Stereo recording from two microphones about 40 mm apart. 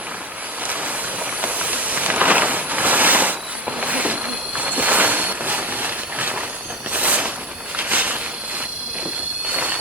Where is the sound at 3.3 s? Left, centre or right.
Right.